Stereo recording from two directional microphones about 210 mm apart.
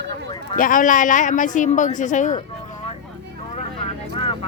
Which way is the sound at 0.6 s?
40° left (ahead or behind).